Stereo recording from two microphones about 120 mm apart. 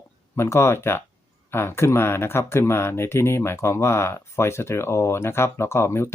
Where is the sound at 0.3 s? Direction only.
25° left (ahead or behind).